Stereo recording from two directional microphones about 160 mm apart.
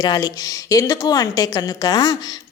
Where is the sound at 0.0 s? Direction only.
20° left (ahead or behind).